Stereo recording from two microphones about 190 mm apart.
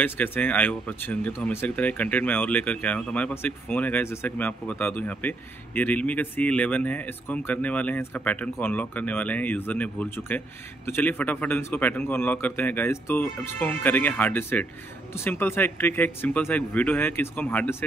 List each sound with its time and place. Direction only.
0.0 s speech: 10° left (ahead or behind)